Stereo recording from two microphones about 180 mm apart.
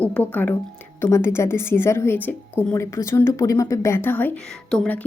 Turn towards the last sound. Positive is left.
turn(degrees=5)  # may be behind; listen again after turning